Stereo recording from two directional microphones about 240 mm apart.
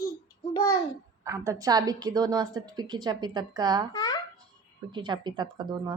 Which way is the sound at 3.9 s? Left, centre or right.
Centre.